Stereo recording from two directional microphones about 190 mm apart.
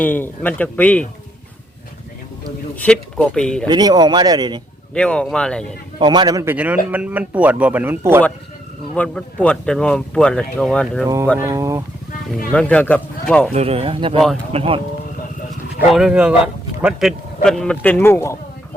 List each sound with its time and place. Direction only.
0.0 s speech: 10° left (ahead or behind)
2.7 s speech: 5° left (ahead or behind)
3.7 s speech: 20° right (ahead or behind)
4.9 s speech: 5° left (ahead or behind)
6.0 s speech: 25° right (ahead or behind)
9.0 s speech: 5° left (ahead or behind)
11.0 s speech: 15° right (ahead or behind)
12.5 s speech: 5° left (ahead or behind)
13.5 s speech: 30° right (ahead or behind)
15.9 s speech: 5° right (ahead or behind); by 18.3 s 15° left (ahead or behind)